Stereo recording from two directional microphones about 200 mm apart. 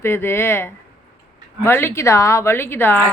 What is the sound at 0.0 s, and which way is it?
Speech, 10° left (ahead or behind).